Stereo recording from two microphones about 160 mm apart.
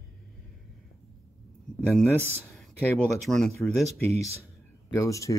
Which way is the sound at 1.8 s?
10° left (ahead or behind).